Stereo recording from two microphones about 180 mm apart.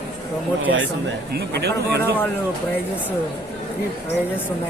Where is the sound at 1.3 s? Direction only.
65° right (ahead or behind).